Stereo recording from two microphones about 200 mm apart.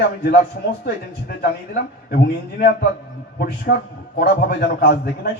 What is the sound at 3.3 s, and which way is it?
A man's voice, 50° left (ahead or behind).